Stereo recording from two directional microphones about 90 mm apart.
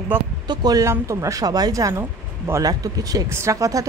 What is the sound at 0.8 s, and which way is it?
Speech, 35° right (ahead or behind).